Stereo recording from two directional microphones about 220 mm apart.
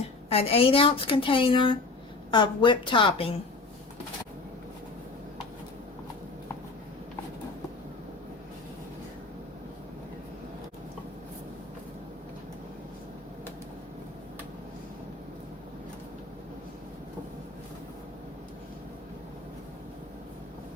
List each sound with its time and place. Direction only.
0.3 s speech: 25° left (ahead or behind)